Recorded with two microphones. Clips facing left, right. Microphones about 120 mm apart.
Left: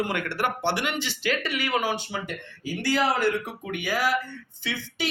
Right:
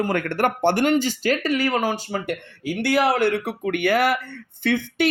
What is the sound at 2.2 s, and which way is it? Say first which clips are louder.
Speech: right 7 dB; 65° right (ahead or behind).